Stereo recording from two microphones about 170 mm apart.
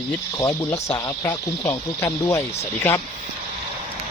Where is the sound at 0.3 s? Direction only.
15° left (ahead or behind).